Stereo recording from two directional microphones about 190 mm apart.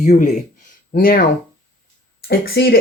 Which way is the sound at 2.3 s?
55° left (ahead or behind).